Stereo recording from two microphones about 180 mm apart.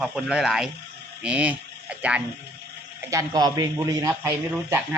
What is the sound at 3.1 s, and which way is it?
A man's voice, 20° right (ahead or behind).